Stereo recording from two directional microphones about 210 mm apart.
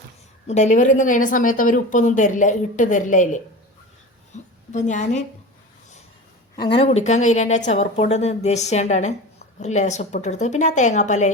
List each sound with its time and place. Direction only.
0.4 s a woman's voice: 35° left (ahead or behind)
4.3 s a sound: 35° left (ahead or behind)
4.7 s a woman's voice: 35° left (ahead or behind)
6.7 s a woman's voice: 30° left (ahead or behind)